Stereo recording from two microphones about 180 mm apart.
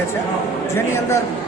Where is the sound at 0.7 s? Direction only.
15° left (ahead or behind).